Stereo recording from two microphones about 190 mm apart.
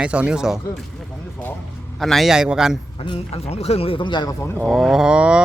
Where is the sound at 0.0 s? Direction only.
5° right (ahead or behind).